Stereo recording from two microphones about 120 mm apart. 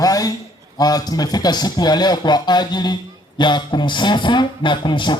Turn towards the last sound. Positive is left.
turn(degrees=40)  # may be behind; listen again after turning